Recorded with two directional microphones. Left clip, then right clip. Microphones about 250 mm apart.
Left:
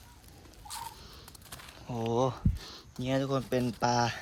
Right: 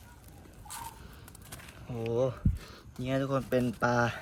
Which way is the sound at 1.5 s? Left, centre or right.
Centre.